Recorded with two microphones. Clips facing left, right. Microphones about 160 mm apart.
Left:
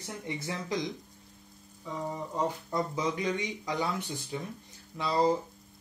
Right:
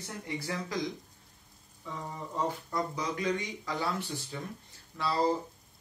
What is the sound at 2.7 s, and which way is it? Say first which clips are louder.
A man's voice: left 3 dB; 20° left (ahead or behind).